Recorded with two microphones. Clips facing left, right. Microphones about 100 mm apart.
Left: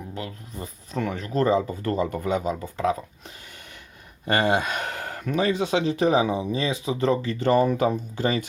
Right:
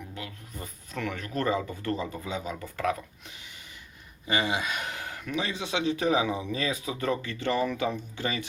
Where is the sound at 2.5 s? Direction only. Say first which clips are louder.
Left 5 dB; 25° left (ahead or behind).